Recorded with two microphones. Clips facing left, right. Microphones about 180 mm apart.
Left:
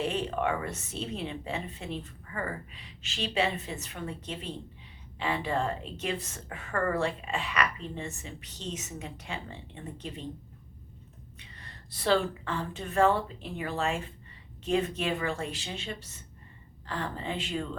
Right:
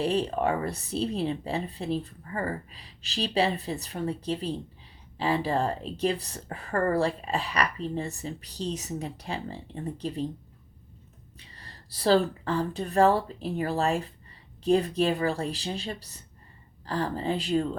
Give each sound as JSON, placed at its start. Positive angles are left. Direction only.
{"t": 0.0, "sound": "a woman's voice", "side_deg": -35}
{"t": 11.3, "sound": "a woman's voice", "side_deg": -35}